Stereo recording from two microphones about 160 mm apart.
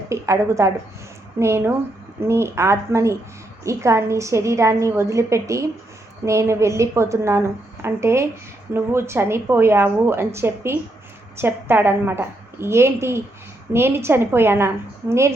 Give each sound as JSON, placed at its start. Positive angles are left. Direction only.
{"t": 0.1, "sound": "a woman's voice", "side_deg": -20}